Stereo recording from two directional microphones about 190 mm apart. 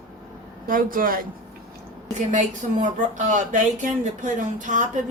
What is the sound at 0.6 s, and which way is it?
Speech, 45° right (ahead or behind).